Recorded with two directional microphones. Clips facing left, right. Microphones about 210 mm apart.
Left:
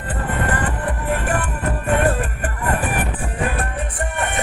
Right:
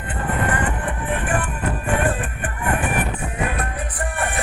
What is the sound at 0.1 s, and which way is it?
Music, 35° left (ahead or behind).